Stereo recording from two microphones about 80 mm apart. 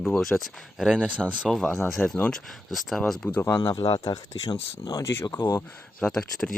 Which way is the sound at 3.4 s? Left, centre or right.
Left.